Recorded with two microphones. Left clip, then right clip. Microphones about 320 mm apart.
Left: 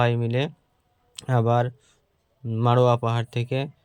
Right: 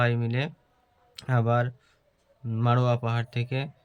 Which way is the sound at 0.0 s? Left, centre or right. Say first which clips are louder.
Left 4 dB; centre.